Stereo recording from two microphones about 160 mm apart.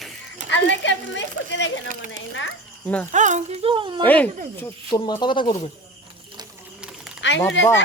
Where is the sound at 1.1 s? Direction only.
90° left.